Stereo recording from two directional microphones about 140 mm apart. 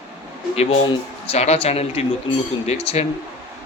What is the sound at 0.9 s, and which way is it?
Speech, 45° left (ahead or behind).